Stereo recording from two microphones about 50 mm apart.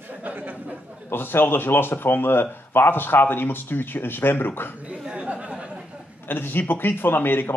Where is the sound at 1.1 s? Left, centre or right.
Left.